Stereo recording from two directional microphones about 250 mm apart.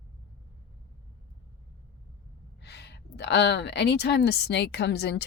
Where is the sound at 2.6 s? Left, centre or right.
Left.